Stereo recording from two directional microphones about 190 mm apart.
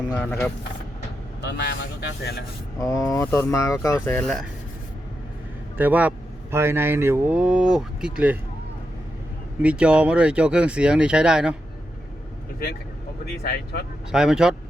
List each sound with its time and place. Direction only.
0.1 s speech: 10° left (ahead or behind)
1.4 s speech: 65° left (ahead or behind)
2.7 s speech: 15° left (ahead or behind)
5.7 s speech: 10° right (ahead or behind)
9.6 s speech: 5° right (ahead or behind)
13.4 s speech: 55° left (ahead or behind)
14.1 s speech: 5° right (ahead or behind)